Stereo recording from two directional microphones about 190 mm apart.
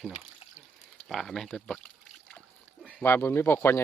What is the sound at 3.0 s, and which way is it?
Speech, 10° left (ahead or behind).